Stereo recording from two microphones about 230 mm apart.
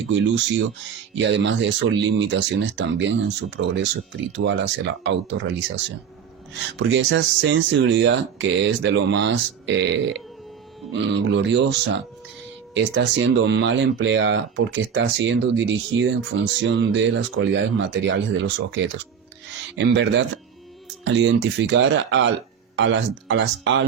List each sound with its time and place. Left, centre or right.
1.2 s speech: right
19.7 s speech: right